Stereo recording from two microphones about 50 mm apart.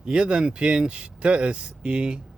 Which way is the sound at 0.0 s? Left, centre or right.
Centre.